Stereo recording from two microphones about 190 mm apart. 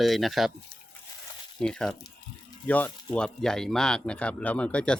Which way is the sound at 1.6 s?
5° left (ahead or behind).